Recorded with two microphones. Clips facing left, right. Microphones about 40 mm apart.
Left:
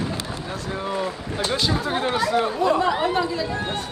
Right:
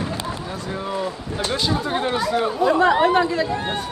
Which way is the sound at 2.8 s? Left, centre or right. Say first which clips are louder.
Right 5 dB; right.